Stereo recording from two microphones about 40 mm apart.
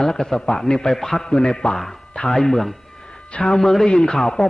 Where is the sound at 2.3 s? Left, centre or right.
Centre.